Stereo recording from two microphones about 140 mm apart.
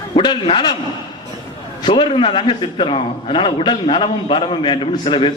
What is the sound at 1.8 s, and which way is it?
A man's voice, 35° left (ahead or behind).